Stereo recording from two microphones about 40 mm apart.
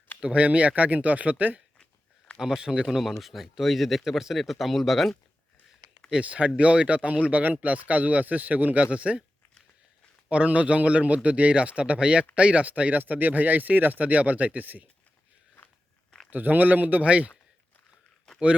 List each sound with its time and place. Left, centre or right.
0.2 s speech: right
2.6 s speech: right
2.9 s speech: centre
6.2 s speech: right
10.2 s speech: right
13.0 s speech: right
14.0 s speech: right
16.3 s speech: right